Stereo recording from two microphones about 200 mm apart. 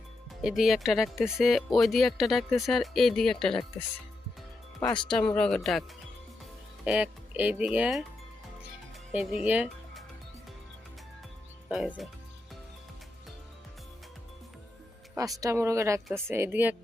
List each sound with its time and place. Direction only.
0.4 s speech: centre (ahead or behind)
4.8 s speech: 20° left (ahead or behind)
5.1 s speech: 5° left (ahead or behind)
6.8 s speech: 5° right (ahead or behind)
9.1 s speech: 5° right (ahead or behind)
11.7 s speech: centre (ahead or behind)
15.1 s speech: 15° right (ahead or behind)